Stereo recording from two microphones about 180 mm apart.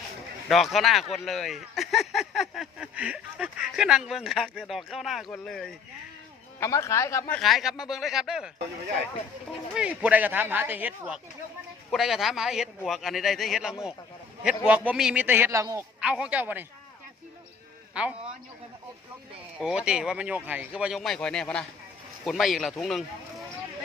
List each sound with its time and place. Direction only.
0.4 s speech: centre (ahead or behind)
6.6 s a man's voice: 15° left (ahead or behind)
7.3 s speech: centre (ahead or behind)
9.7 s speech: 5° right (ahead or behind)
16.0 s speech: 5° right (ahead or behind)
19.5 s speech: 5° right (ahead or behind)